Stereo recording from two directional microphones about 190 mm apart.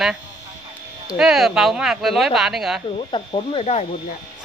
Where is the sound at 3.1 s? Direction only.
25° left (ahead or behind).